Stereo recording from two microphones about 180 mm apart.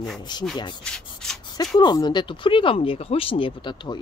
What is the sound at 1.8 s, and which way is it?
Speech, 25° left (ahead or behind).